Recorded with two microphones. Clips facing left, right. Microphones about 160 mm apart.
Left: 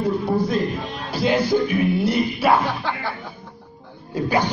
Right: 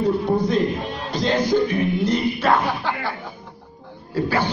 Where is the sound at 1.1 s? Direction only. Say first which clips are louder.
Even; 10° left (ahead or behind).